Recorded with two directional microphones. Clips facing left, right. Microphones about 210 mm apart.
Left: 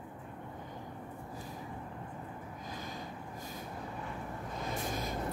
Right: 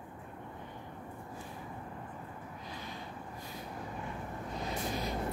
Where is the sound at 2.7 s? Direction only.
45° left (ahead or behind).